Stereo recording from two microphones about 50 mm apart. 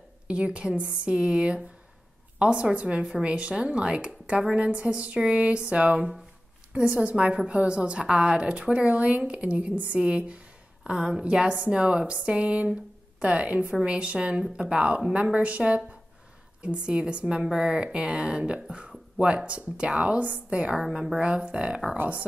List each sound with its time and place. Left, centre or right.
0.3 s a woman's voice: right
20.9 s a woman's voice: centre
21.2 s a woman's voice: right
21.9 s speech: right